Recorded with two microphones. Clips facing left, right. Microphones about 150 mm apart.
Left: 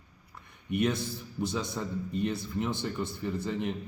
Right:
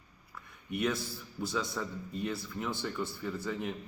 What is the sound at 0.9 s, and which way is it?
A man's voice, 20° left (ahead or behind).